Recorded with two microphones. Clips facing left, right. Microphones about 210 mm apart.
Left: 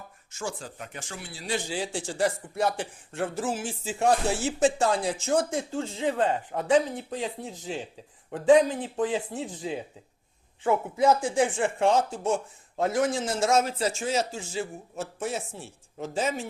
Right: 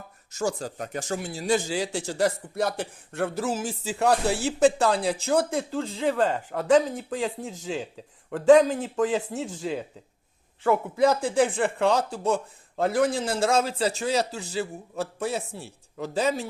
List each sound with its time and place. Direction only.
0.3 s speech: 40° right (ahead or behind)
2.6 s a man's voice: 55° right (ahead or behind)
3.4 s speech: 40° right (ahead or behind)
6.1 s speech: 45° right (ahead or behind)
10.6 s speech: 55° right (ahead or behind)
11.2 s speech: 35° right (ahead or behind)